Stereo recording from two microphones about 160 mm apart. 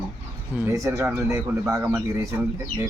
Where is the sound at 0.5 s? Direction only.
15° right (ahead or behind).